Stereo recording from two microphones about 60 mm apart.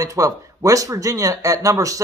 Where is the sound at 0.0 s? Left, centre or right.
Right.